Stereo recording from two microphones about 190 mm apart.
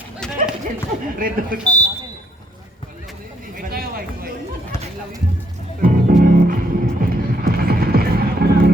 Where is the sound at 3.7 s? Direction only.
50° right (ahead or behind).